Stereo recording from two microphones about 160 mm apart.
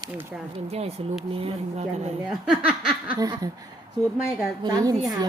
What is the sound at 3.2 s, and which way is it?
Speech, 20° right (ahead or behind).